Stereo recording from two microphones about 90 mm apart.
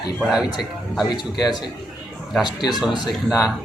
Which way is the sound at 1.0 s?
50° left (ahead or behind).